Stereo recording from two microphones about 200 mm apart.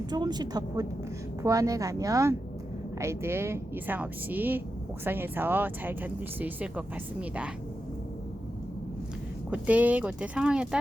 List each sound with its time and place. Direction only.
0.0 s a woman's voice: 20° right (ahead or behind)
9.5 s speech: 5° right (ahead or behind)